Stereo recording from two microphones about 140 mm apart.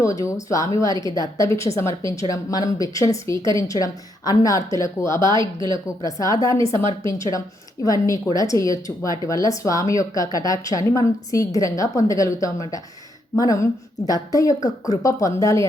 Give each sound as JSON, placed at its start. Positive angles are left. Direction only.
{"t": 0.0, "sound": "speech", "side_deg": 25}